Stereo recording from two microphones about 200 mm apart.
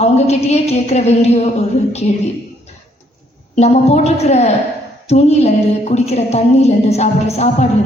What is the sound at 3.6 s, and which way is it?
Music, 35° left (ahead or behind).